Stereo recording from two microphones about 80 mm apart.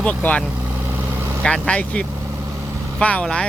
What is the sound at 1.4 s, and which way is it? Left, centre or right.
Speech, centre.